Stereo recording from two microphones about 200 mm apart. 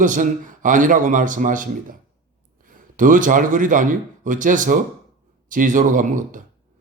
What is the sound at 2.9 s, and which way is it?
Speech, 40° right (ahead or behind).